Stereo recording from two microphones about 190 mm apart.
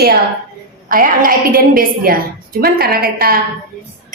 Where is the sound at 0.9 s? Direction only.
50° right (ahead or behind).